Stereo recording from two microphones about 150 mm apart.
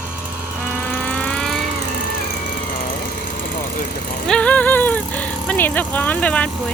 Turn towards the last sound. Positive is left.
turn(degrees=10)  # may be behind; listen again after turning